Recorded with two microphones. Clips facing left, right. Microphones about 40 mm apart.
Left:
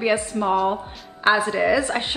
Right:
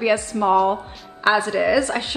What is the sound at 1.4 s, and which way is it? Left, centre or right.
Speech, centre.